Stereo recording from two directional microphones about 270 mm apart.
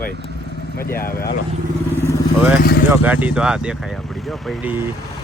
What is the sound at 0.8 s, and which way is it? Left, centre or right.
Speech, left.